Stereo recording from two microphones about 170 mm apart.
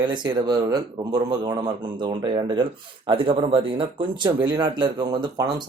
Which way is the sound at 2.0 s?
30° right (ahead or behind).